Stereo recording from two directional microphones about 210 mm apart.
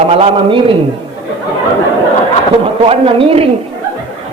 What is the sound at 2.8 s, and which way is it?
Speech, 25° right (ahead or behind).